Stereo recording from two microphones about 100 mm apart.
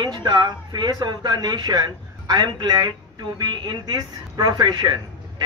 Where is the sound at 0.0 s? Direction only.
45° right (ahead or behind).